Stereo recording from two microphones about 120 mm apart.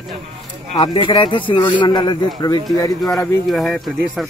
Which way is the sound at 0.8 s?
40° left (ahead or behind).